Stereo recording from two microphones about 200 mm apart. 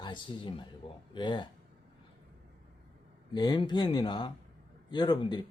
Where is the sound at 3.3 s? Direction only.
20° left (ahead or behind).